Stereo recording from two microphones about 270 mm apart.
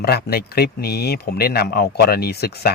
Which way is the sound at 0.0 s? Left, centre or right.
Left.